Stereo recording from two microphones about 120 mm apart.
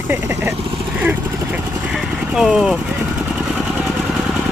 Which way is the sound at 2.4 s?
5° right (ahead or behind).